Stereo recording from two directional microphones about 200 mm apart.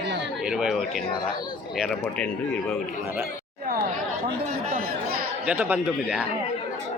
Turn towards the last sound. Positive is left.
turn(degrees=-10)  # may be behind; listen again after turning